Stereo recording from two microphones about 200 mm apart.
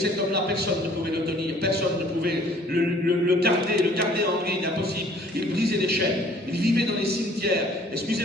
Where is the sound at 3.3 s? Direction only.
50° right (ahead or behind).